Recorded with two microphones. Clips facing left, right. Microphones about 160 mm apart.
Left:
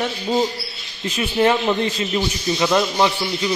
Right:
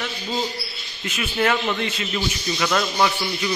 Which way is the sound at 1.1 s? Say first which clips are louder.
Left 5 dB; 30° left (ahead or behind).